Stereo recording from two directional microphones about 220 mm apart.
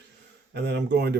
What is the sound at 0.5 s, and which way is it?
Speech, 50° right (ahead or behind).